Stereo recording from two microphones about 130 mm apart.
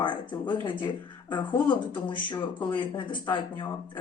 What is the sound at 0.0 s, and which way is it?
Speech, 35° left (ahead or behind).